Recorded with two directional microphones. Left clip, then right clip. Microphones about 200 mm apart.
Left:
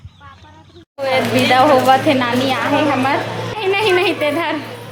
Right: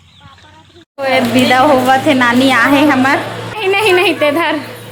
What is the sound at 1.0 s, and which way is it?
Speech, 20° right (ahead or behind).